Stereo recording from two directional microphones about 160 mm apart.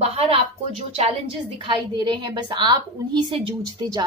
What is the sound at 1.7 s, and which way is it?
A woman's voice, 30° right (ahead or behind).